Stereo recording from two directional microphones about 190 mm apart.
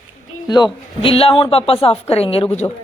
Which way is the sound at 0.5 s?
25° left (ahead or behind).